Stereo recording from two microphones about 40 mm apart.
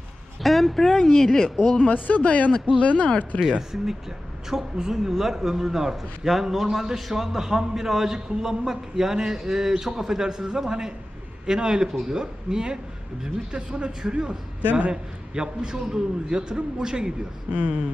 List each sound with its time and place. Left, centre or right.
0.4 s speech: centre
1.9 s speech: left
3.3 s a man's voice: centre
4.7 s a man's voice: centre
17.5 s speech: right